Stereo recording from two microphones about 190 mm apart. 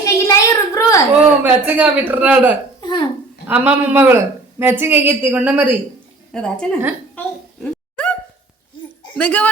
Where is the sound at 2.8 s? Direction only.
25° left (ahead or behind).